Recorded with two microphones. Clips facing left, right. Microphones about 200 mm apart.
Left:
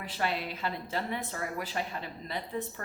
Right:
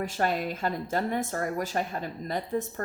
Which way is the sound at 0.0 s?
45° right (ahead or behind).